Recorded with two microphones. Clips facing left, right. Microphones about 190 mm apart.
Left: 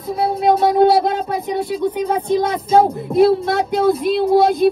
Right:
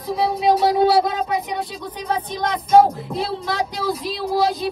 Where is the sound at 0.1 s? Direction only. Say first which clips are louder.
Left 2 dB; 55° left (ahead or behind).